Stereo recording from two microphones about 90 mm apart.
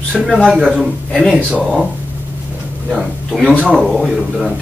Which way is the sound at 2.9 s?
5° right (ahead or behind).